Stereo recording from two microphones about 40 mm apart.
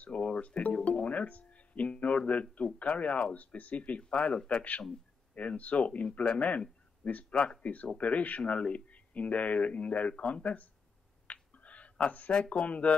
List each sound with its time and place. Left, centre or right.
0.0 s speech: left
4.0 s speech: left
11.5 s a sound: left
12.3 s speech: left